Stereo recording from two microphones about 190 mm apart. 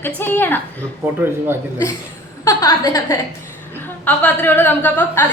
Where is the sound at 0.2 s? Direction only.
10° left (ahead or behind).